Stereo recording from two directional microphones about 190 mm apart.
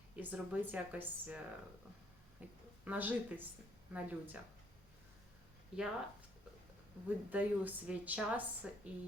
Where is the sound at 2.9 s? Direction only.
10° right (ahead or behind).